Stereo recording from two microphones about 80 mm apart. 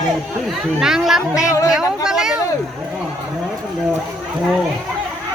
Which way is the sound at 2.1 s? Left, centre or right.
Centre.